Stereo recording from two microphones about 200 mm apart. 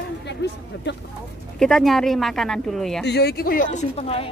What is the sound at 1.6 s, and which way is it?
A woman's voice, 5° left (ahead or behind).